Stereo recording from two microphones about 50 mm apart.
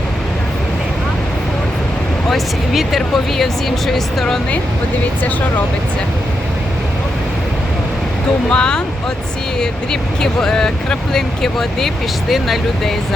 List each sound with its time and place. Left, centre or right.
2.3 s speech: centre
8.4 s speech: centre